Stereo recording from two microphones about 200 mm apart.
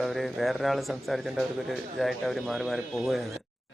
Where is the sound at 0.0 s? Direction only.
Centre (ahead or behind).